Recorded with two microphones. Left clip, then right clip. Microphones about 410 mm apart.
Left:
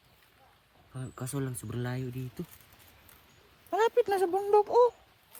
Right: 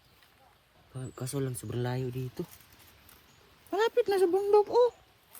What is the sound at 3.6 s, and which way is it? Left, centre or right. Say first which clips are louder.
Speech: left 1 dB; left.